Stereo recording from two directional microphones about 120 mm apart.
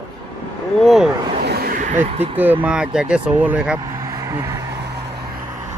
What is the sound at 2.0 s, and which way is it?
Speech, 55° right (ahead or behind).